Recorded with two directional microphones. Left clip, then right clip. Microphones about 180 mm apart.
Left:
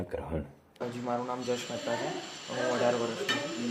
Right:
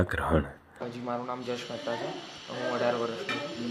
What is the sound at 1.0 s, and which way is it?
Speech, 5° left (ahead or behind).